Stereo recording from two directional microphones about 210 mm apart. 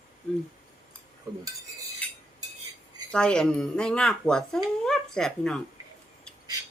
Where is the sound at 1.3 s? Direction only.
15° right (ahead or behind).